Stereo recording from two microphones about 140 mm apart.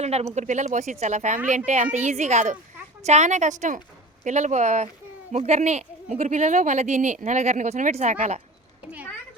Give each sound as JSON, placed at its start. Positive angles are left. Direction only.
{"t": 0.0, "sound": "speech", "side_deg": -50}